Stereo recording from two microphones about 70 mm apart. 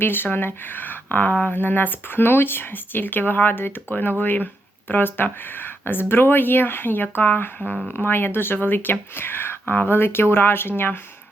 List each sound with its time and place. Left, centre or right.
0.0 s speech: left